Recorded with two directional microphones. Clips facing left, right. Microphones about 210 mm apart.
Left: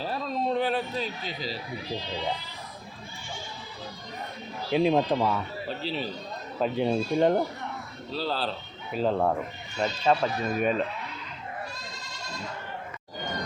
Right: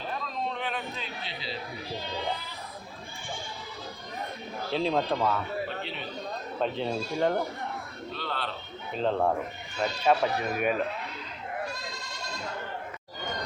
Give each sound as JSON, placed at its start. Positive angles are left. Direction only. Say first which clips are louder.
{"t": 0.0, "sound": "a sound", "louder": "left 4 dB", "side_deg": 35}
{"t": 4.7, "sound": "speech", "louder": "left 4 dB", "side_deg": 15}
{"t": 5.6, "sound": "a sound", "louder": "left 4 dB", "side_deg": 35}
{"t": 6.6, "sound": "speech", "louder": "left 5 dB", "side_deg": 15}
{"t": 8.1, "sound": "speech", "louder": "left 6 dB", "side_deg": 35}
{"t": 8.9, "sound": "speech", "louder": "left 1 dB", "side_deg": 5}
{"t": 10.1, "sound": "speech", "louder": "even", "side_deg": -10}